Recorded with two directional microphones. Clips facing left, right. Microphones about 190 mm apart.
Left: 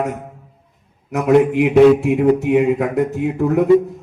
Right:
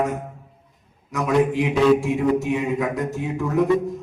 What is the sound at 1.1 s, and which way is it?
A man's voice, 60° left (ahead or behind).